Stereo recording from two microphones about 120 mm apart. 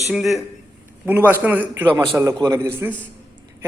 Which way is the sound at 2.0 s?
25° right (ahead or behind).